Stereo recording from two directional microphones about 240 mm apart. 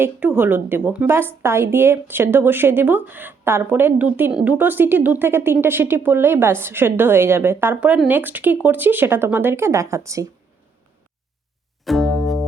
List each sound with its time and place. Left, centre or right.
0.0 s a woman's voice: centre
11.9 s music: centre